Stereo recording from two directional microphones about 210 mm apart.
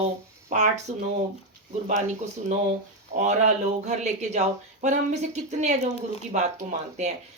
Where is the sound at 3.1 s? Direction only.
35° right (ahead or behind).